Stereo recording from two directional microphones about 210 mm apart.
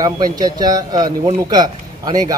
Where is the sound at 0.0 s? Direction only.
20° right (ahead or behind).